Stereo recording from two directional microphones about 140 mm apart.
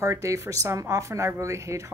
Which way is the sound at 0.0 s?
20° right (ahead or behind).